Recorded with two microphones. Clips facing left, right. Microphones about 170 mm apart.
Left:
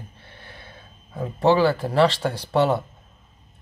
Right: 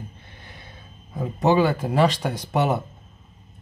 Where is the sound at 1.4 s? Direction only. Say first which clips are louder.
Left 1 dB; 15° right (ahead or behind).